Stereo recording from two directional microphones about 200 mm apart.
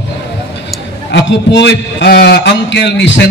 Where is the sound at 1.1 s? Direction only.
60° left (ahead or behind).